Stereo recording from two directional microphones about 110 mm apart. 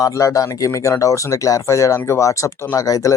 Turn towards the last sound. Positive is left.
turn(degrees=30)  # may be behind; listen again after turning